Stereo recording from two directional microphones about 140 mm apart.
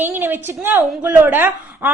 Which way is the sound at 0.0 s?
15° right (ahead or behind).